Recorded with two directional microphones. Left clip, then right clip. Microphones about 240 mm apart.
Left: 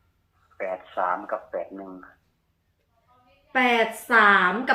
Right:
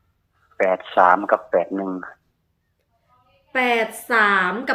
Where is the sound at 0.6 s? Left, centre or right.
Right.